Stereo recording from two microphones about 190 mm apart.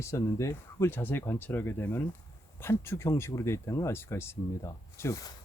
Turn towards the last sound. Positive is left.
turn(degrees=20)  # may be behind; listen again after turning